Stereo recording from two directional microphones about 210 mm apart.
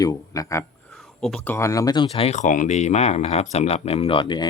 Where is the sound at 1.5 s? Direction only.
15° left (ahead or behind).